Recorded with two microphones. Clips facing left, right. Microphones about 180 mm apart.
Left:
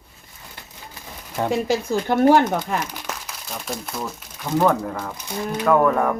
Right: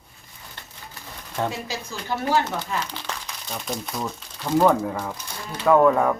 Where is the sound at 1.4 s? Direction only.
55° left (ahead or behind).